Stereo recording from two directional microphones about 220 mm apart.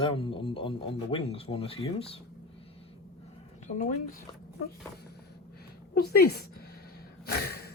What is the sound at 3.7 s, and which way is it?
Speech, 35° left (ahead or behind).